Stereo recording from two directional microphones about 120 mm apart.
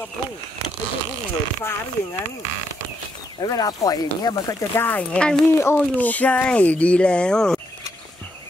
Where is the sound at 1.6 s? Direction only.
25° left (ahead or behind).